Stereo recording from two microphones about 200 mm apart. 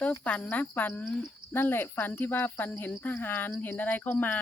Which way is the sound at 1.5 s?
10° left (ahead or behind).